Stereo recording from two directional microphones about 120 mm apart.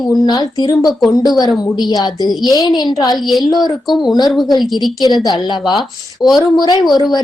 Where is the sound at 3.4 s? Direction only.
35° left (ahead or behind).